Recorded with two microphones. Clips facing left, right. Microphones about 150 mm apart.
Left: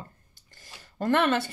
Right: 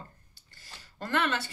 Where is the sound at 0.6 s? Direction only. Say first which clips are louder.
Left 9 dB; 45° left (ahead or behind).